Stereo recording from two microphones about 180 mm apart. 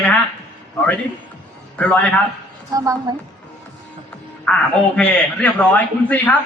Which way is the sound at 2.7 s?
20° right (ahead or behind).